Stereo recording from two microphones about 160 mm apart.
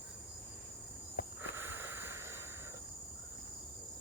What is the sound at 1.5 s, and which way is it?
Boat, 15° right (ahead or behind).